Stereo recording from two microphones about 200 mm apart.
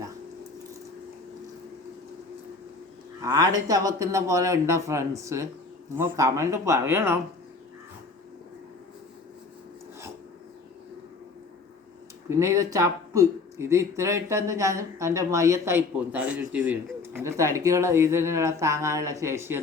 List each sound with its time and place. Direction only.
3.2 s speech: 20° right (ahead or behind)
12.3 s speech: 15° right (ahead or behind)